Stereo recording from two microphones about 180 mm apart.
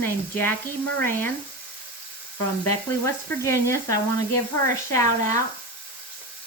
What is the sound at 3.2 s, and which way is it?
Speech, 15° left (ahead or behind).